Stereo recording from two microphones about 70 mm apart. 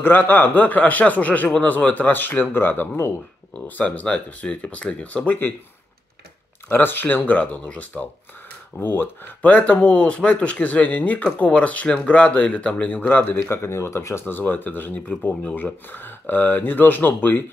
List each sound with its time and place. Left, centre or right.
0.0 s speech: left
6.7 s speech: left
13.2 s speech: left
14.2 s speech: left